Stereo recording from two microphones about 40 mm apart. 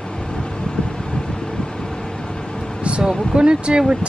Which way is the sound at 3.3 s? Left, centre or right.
Right.